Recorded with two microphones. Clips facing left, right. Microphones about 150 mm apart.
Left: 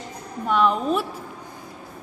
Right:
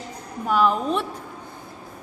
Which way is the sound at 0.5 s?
Centre (ahead or behind).